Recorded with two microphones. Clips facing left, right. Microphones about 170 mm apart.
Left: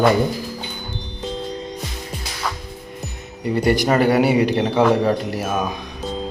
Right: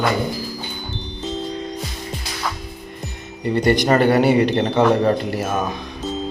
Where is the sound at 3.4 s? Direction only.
5° left (ahead or behind).